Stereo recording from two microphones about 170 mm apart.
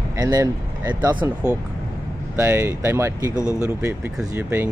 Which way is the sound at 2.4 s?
15° right (ahead or behind).